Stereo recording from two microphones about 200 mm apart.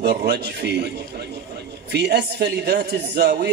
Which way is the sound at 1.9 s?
55° right (ahead or behind).